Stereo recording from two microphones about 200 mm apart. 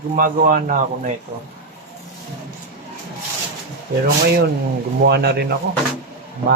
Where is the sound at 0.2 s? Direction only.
40° right (ahead or behind).